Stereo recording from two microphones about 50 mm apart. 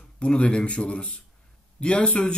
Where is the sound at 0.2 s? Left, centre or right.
Left.